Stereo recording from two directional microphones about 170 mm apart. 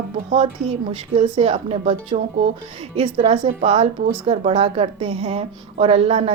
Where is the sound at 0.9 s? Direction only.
35° right (ahead or behind).